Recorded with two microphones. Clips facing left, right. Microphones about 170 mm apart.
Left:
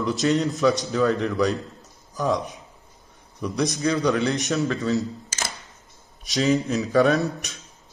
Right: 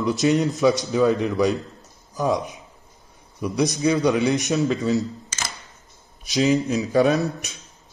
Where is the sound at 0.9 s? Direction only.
15° right (ahead or behind).